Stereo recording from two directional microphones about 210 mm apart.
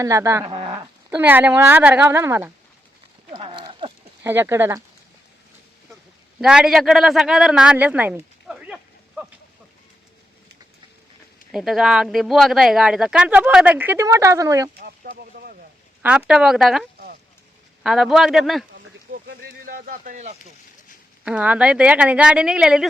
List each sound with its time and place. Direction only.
0.0 s speech: 15° right (ahead or behind)
1.1 s speech: 10° right (ahead or behind)
3.3 s horse: 20° right (ahead or behind)
4.2 s speech: 10° right (ahead or behind)
6.4 s speech: 5° right (ahead or behind)
11.5 s speech: centre (ahead or behind)
14.8 s a sound: 45° right (ahead or behind)
16.0 s speech: 5° right (ahead or behind)
17.8 s speech: centre (ahead or behind)
19.1 s speech: 45° right (ahead or behind)
21.2 s speech: 5° right (ahead or behind)